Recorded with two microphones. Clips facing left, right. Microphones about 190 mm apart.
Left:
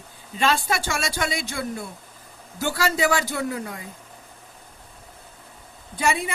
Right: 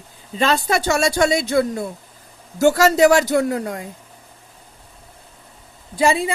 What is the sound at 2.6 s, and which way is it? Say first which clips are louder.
Speech: right 10 dB; 45° right (ahead or behind).